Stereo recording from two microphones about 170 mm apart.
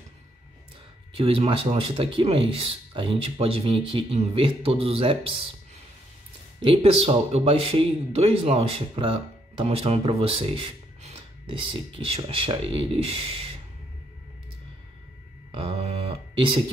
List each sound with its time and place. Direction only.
1.1 s speech: 35° right (ahead or behind)
6.6 s speech: 35° right (ahead or behind)
15.5 s a sound: 35° right (ahead or behind)